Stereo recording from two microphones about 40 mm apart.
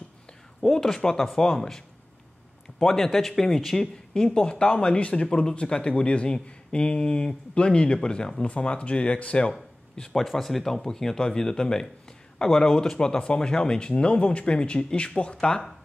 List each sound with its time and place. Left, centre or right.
0.6 s speech: centre
2.8 s speech: centre
4.1 s speech: left
10.1 s speech: centre